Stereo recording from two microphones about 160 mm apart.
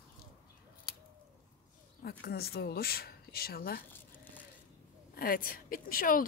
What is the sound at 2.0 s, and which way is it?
Speech, 70° left (ahead or behind).